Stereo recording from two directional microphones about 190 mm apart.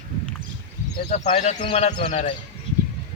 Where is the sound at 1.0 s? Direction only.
35° left (ahead or behind).